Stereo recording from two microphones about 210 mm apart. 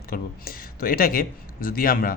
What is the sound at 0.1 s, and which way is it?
A man's voice, 45° left (ahead or behind).